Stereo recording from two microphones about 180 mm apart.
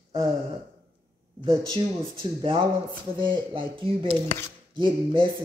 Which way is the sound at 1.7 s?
30° right (ahead or behind).